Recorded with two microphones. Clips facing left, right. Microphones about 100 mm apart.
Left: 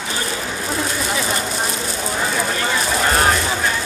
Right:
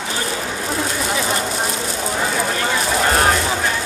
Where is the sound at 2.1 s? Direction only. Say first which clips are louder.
Even; 45° right (ahead or behind).